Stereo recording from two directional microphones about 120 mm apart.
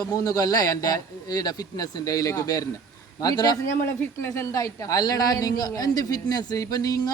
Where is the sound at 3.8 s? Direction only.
20° left (ahead or behind).